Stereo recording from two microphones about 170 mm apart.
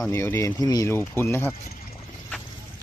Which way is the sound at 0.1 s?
15° left (ahead or behind).